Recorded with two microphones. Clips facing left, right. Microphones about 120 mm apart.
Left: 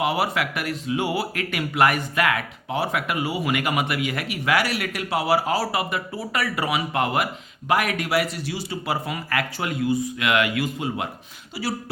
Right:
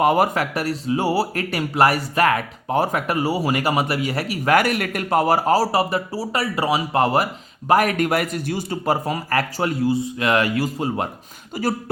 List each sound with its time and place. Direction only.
0.0 s speech: 45° right (ahead or behind)